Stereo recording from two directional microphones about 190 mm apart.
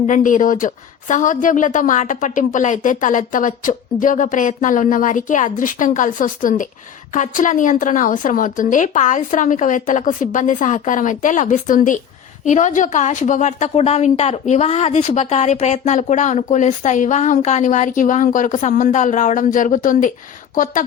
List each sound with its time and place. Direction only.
0.1 s a woman's voice: 45° left (ahead or behind)